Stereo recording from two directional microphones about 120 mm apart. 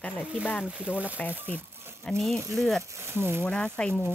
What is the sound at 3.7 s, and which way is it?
Speech, 10° left (ahead or behind).